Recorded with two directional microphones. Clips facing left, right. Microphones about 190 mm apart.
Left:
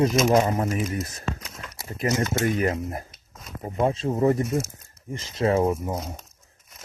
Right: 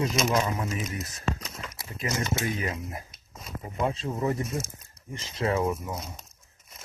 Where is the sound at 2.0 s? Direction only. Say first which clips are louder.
Left 6 dB; 55° left (ahead or behind).